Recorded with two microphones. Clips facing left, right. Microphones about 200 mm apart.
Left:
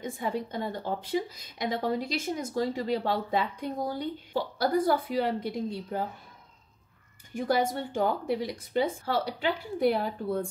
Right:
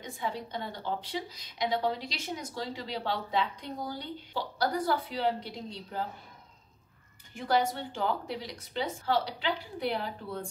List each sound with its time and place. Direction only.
0.0 s speech: 50° left (ahead or behind)
7.3 s speech: 50° left (ahead or behind)